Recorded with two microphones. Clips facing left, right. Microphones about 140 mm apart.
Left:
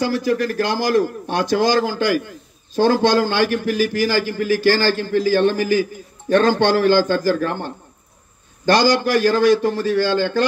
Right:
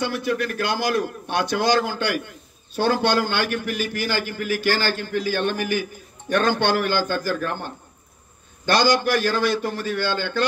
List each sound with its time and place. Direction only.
0.0 s a man's voice: 35° left (ahead or behind)
9.5 s a man's voice: 90° left
9.9 s a man's voice: 35° left (ahead or behind)